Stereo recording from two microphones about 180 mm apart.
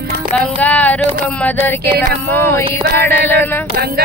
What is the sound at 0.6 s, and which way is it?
Speech, 10° left (ahead or behind).